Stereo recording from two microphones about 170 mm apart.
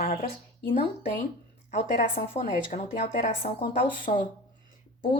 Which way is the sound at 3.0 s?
40° left (ahead or behind).